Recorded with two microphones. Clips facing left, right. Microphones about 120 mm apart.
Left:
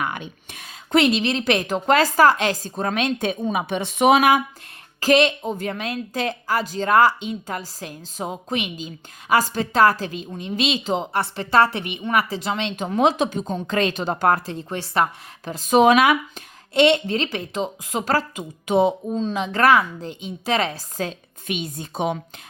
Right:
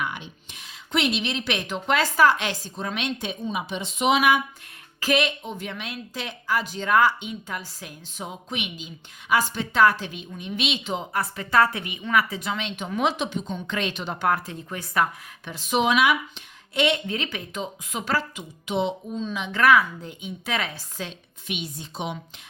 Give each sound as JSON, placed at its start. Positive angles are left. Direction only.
{"t": 0.9, "sound": "speech", "side_deg": 40}
{"t": 16.7, "sound": "speech", "side_deg": 30}